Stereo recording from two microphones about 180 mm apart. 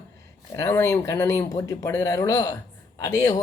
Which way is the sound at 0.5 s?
15° left (ahead or behind).